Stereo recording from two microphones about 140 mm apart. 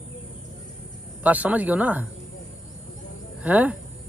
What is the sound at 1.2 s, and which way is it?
Speech, 10° right (ahead or behind).